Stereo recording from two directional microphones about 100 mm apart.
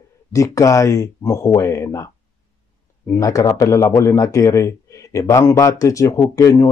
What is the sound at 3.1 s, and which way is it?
Speech, 35° left (ahead or behind).